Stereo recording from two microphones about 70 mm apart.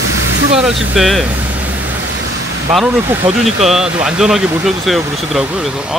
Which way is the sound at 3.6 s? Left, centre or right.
Centre.